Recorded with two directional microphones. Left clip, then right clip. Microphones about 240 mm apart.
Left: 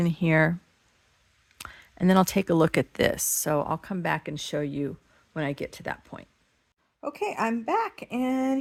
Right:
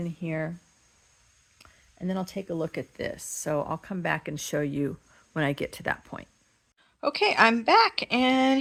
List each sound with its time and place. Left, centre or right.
0.0 s speech: left
1.5 s speech: left; by 8.5 s centre